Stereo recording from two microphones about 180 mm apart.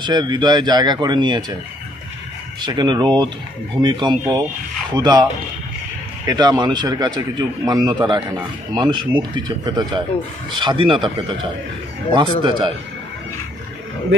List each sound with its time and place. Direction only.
0.0 s a man's voice: 25° right (ahead or behind)
2.6 s a man's voice: 25° right (ahead or behind)